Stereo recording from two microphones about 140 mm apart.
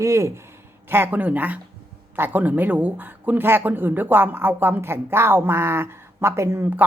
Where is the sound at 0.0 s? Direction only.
20° right (ahead or behind).